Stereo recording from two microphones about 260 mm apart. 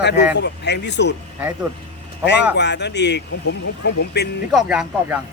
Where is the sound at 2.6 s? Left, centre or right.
Left.